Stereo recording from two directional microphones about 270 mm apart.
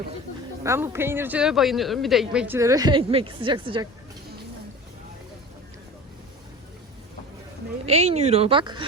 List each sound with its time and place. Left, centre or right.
0.6 s a woman's voice: centre
7.9 s speech: right